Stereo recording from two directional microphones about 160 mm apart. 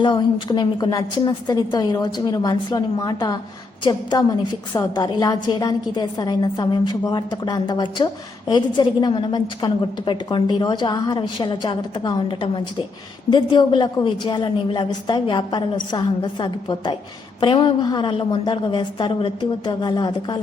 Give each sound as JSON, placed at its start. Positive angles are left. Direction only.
{"t": 0.0, "sound": "a woman's voice", "side_deg": 30}
{"t": 4.7, "sound": "a woman's voice", "side_deg": 25}